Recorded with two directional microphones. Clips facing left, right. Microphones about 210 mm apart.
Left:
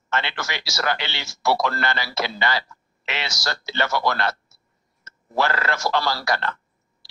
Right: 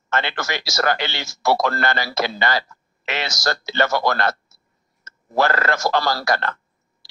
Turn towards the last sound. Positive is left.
turn(degrees=-45)  # may be behind; listen again after turning